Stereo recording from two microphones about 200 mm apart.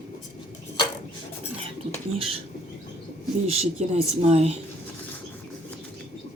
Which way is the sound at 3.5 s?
30° right (ahead or behind).